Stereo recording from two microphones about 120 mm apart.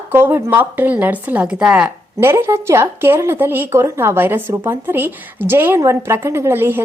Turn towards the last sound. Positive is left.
turn(degrees=-20)  # may be behind; listen again after turning